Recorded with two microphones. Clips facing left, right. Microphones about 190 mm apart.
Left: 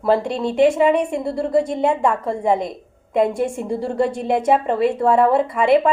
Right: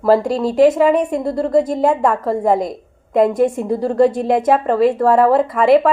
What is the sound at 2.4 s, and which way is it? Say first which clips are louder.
Speech: right 2 dB; 45° right (ahead or behind).